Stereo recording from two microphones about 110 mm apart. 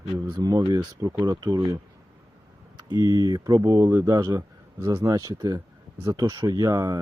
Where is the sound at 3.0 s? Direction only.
35° right (ahead or behind).